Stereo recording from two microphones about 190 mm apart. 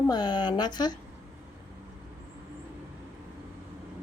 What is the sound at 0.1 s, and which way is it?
Speech, 20° left (ahead or behind).